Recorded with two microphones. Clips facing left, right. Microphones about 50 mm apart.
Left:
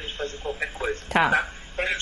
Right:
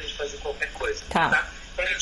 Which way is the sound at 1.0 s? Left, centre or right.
Left.